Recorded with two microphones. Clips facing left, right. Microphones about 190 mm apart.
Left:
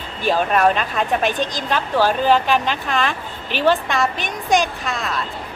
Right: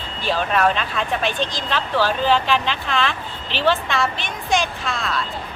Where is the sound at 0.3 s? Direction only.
50° left (ahead or behind).